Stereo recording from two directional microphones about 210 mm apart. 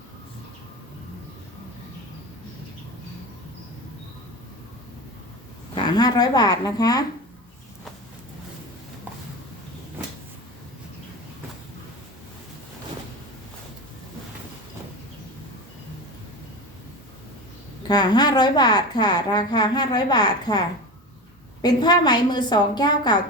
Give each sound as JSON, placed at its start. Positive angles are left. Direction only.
{"t": 5.7, "sound": "a woman's voice", "side_deg": 20}
{"t": 17.8, "sound": "a woman's voice", "side_deg": 20}